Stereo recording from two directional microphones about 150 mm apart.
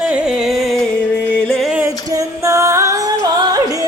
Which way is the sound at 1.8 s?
20° right (ahead or behind).